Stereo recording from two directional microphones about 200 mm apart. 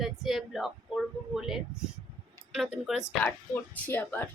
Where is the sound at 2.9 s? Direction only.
Centre (ahead or behind).